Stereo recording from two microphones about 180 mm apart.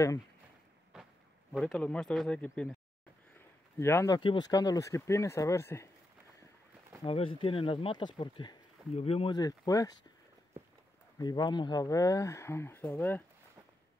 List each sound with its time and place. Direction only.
1.5 s speech: centre (ahead or behind)
3.3 s a sound: 15° left (ahead or behind)
4.2 s speech: 25° left (ahead or behind)
7.1 s speech: 30° left (ahead or behind)
11.1 s speech: 25° left (ahead or behind)